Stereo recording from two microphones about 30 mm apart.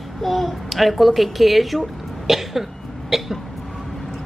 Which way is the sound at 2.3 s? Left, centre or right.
Centre.